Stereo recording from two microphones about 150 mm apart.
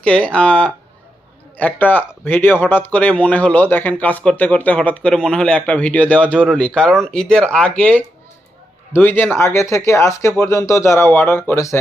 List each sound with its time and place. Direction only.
0.0 s speech: 10° left (ahead or behind)